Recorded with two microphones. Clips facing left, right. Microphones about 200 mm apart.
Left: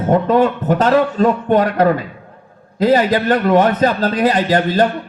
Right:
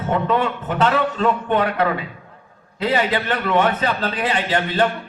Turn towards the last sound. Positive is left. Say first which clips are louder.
# left 5 dB
turn(degrees=40)  # may be behind; listen again after turning